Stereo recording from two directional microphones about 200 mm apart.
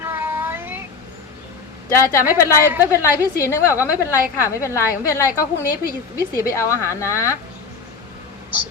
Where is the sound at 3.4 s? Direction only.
15° left (ahead or behind).